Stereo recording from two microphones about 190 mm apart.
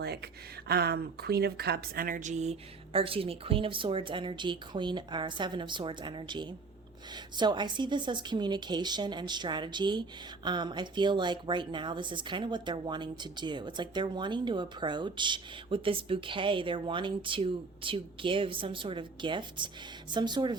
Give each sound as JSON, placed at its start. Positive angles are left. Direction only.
{"t": 0.7, "sound": "speech", "side_deg": -60}